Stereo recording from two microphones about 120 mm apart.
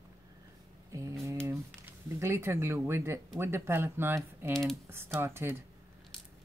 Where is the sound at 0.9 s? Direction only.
25° right (ahead or behind).